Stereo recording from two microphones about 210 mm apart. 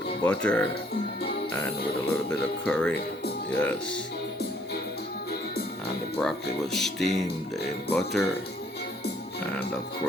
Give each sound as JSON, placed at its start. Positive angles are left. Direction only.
{"t": 0.3, "sound": "speech", "side_deg": 5}
{"t": 2.3, "sound": "speech", "side_deg": 5}
{"t": 6.1, "sound": "speech", "side_deg": 0}